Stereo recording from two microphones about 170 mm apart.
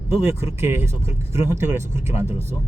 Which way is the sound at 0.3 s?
15° right (ahead or behind).